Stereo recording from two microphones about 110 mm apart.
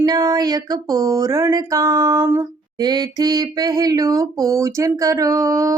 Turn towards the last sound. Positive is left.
turn(degrees=-30)  # may be behind; listen again after turning